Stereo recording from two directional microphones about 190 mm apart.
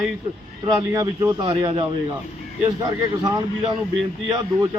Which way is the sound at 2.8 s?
20° right (ahead or behind).